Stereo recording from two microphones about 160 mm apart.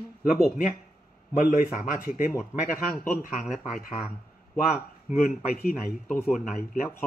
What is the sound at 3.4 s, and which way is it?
Speech, 5° right (ahead or behind).